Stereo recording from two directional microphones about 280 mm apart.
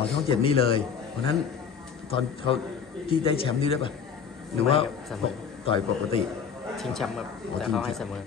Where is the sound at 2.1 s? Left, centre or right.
Centre.